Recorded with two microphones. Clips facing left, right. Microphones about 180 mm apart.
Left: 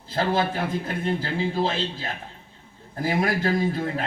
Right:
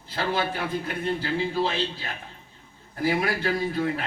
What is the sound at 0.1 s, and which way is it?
A man's voice, 45° left (ahead or behind).